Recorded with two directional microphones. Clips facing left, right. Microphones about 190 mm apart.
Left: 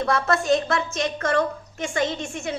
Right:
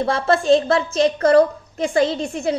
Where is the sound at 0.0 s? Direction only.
30° right (ahead or behind).